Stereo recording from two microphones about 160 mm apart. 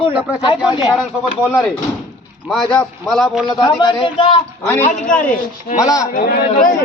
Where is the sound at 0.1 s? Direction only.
10° right (ahead or behind).